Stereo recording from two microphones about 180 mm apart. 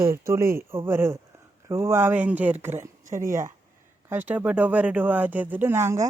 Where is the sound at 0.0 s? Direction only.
15° right (ahead or behind).